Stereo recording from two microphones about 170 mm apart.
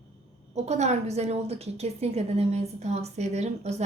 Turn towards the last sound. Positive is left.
turn(degrees=-40)  # may be behind; listen again after turning